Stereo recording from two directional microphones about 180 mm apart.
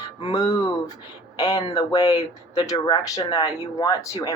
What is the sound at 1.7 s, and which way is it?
Speech, 20° left (ahead or behind).